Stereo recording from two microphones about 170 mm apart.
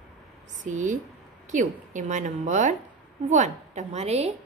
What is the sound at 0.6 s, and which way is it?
A woman's voice, 45° right (ahead or behind).